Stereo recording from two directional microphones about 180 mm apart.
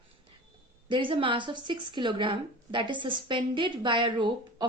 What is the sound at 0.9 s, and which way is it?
A woman's voice, 30° right (ahead or behind).